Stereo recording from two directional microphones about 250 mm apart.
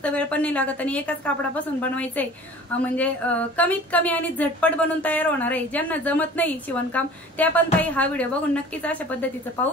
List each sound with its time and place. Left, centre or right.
0.0 s speech: centre